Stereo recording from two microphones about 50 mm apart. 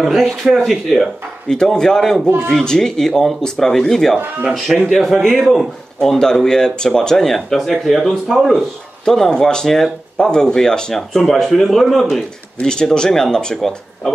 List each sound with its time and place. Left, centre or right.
0.0 s speech: centre
1.5 s speech: centre
2.2 s speech: right
2.5 s speech: centre
4.8 s speech: centre
9.0 s speech: centre
12.5 s speech: centre